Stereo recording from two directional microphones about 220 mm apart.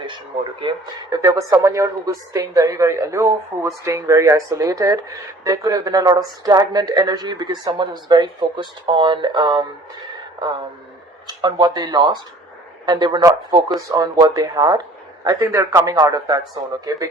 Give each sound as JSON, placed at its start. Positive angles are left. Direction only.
{"t": 1.1, "sound": "a woman's voice", "side_deg": -15}